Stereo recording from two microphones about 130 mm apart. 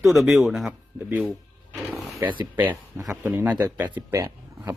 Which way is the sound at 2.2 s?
40° right (ahead or behind).